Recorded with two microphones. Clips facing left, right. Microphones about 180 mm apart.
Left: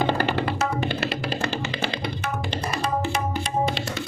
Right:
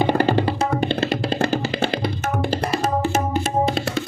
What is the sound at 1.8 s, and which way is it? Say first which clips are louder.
Music: right 6 dB; 50° right (ahead or behind).